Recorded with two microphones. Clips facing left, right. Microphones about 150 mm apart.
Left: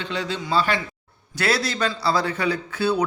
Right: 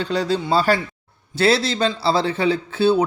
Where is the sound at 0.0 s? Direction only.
35° right (ahead or behind).